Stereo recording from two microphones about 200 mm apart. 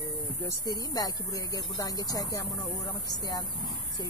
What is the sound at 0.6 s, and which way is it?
Speech, 20° left (ahead or behind).